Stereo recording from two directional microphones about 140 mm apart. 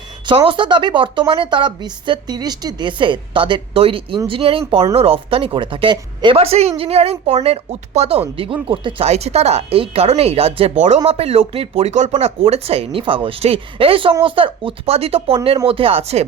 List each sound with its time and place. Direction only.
0.3 s speech: 35° right (ahead or behind)
9.0 s speech: 50° right (ahead or behind)